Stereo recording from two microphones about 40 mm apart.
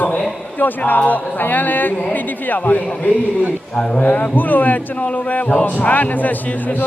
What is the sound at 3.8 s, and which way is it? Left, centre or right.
Speech, left.